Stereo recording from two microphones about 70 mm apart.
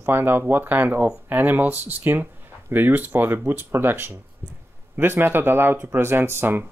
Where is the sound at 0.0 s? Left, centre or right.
Right.